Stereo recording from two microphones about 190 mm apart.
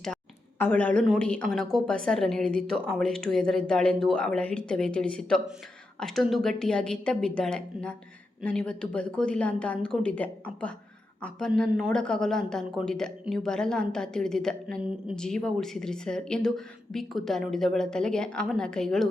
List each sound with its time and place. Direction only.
0.6 s a man's voice: 10° left (ahead or behind)